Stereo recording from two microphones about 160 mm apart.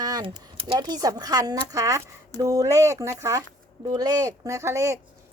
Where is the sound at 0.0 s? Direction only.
25° right (ahead or behind).